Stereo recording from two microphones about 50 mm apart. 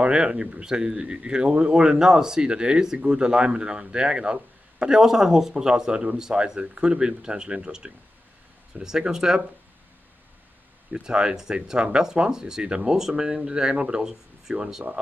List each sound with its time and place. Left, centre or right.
0.0 s speech: centre
10.9 s speech: centre